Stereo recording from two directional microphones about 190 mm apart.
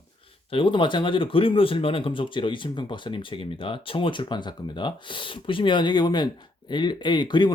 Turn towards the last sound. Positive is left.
turn(degrees=25)  # may be behind; listen again after turning